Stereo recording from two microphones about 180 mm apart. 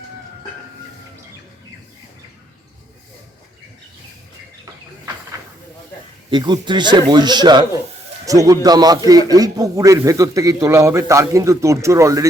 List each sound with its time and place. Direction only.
6.3 s speech: 25° right (ahead or behind)